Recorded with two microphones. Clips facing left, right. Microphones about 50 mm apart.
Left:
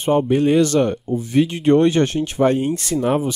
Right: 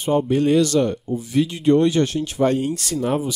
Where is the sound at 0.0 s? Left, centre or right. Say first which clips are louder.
Left 2 dB; left.